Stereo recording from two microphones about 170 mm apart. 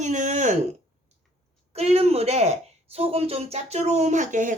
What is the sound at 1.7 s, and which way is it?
Speech, 40° right (ahead or behind).